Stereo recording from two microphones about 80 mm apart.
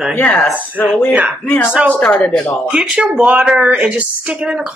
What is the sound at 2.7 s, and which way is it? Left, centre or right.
A woman's voice, centre.